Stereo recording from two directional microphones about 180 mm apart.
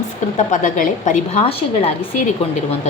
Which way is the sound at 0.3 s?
45° left (ahead or behind).